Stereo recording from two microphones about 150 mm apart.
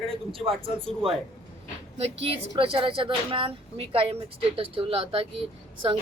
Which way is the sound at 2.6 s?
35° right (ahead or behind).